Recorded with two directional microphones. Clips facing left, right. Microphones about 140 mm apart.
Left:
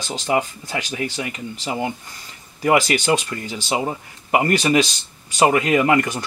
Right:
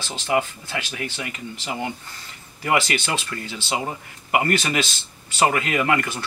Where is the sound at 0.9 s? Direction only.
35° left (ahead or behind).